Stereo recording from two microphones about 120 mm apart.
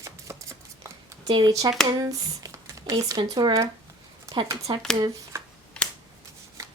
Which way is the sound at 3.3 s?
40° right (ahead or behind).